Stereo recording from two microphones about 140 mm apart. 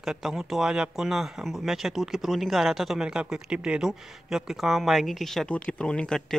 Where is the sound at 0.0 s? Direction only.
Centre (ahead or behind).